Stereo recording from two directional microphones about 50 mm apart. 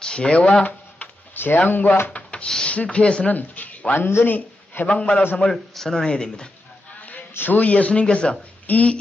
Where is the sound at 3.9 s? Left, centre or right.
Left.